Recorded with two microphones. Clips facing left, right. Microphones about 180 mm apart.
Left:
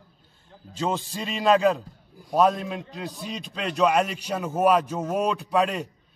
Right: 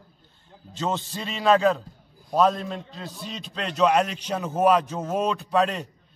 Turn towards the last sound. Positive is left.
turn(degrees=10)  # may be behind; listen again after turning